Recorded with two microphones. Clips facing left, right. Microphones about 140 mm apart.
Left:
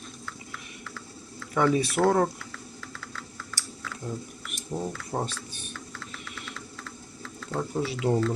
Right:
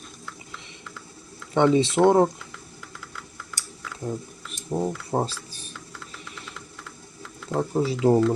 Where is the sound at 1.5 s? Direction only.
25° right (ahead or behind).